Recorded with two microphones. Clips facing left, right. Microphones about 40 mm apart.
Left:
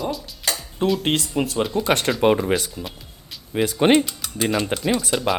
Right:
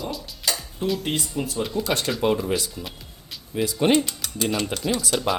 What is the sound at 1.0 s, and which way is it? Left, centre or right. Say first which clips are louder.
Speech: left 5 dB; left.